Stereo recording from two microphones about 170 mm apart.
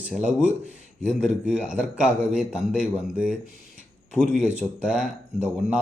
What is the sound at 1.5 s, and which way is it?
Speech, 5° right (ahead or behind).